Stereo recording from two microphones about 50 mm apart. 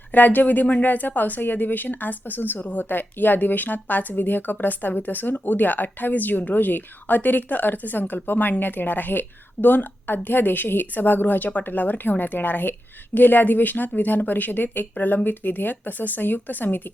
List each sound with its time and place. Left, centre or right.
0.1 s speech: left